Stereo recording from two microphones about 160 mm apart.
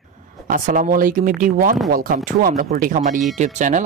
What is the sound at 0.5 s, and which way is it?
Speech, 55° right (ahead or behind).